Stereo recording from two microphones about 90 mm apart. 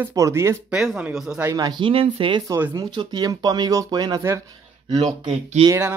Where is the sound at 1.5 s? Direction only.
45° right (ahead or behind).